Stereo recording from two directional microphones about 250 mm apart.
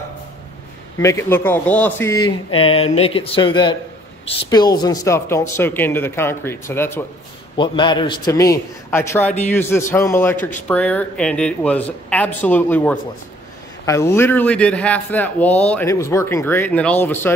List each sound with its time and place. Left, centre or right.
0.9 s a man's voice: centre